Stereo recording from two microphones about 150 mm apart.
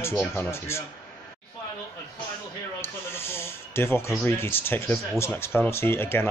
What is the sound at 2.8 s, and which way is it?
Speech, 15° left (ahead or behind).